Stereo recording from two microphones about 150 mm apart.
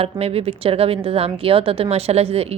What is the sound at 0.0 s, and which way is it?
A woman's voice, 40° right (ahead or behind).